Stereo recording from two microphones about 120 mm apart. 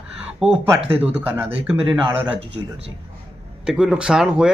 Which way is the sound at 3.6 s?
5° right (ahead or behind).